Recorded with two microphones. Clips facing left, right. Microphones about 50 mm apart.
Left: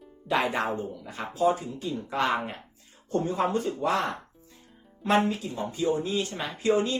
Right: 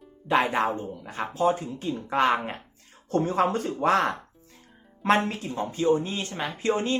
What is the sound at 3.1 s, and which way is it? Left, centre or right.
Speech, right.